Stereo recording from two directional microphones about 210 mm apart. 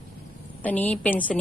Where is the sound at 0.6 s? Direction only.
10° left (ahead or behind).